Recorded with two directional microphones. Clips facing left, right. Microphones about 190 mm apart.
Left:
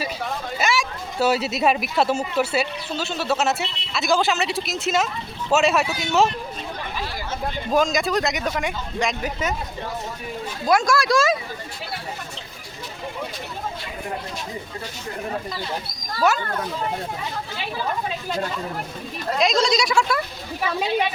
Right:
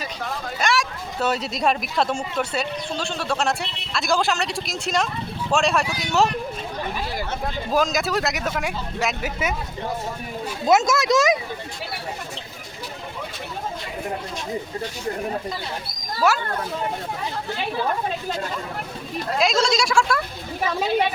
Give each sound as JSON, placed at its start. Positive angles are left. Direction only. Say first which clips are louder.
{"t": 0.0, "sound": "speech", "louder": "left 2 dB", "side_deg": 5}
{"t": 7.7, "sound": "speech", "louder": "left 2 dB", "side_deg": 0}
{"t": 10.7, "sound": "speech", "louder": "right 1 dB", "side_deg": -20}
{"t": 19.4, "sound": "speech", "louder": "left 1 dB", "side_deg": 0}